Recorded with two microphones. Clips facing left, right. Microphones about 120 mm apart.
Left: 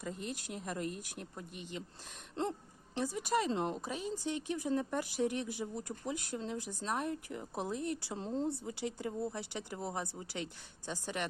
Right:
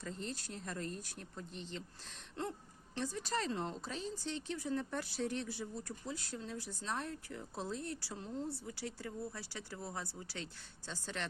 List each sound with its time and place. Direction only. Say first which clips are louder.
0.0 s speech: left 3 dB; 10° left (ahead or behind)
2.3 s a sound: left 5 dB; 25° left (ahead or behind)
2.9 s speech: left 5 dB; 15° left (ahead or behind)